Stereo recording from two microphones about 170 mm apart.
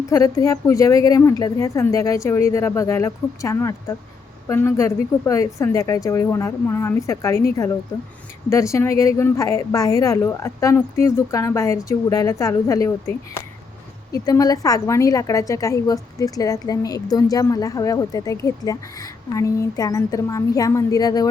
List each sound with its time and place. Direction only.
0.1 s a woman's voice: 20° left (ahead or behind)
8.4 s a woman's voice: 15° left (ahead or behind)